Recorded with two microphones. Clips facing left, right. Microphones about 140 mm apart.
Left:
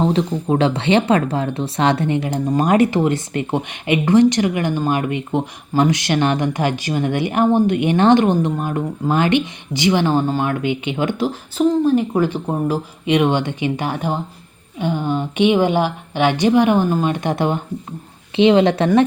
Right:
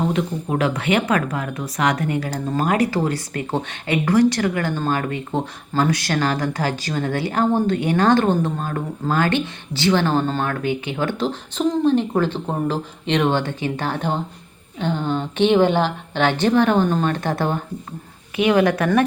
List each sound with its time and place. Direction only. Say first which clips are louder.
0.0 s a woman's voice: left 4 dB; 30° left (ahead or behind)